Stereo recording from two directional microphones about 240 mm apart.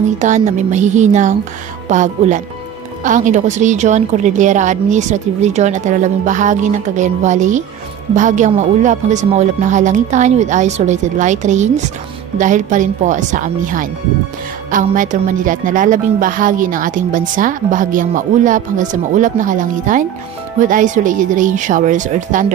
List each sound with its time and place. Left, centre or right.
0.2 s a woman's voice: right